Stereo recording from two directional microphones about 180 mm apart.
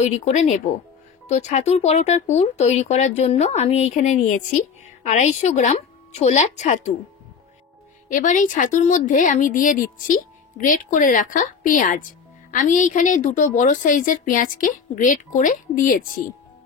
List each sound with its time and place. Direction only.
0.0 s speech: 40° left (ahead or behind)
8.1 s a woman's voice: 45° left (ahead or behind)